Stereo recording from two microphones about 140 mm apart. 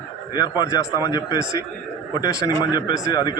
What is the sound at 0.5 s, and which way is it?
A man's voice, 30° left (ahead or behind).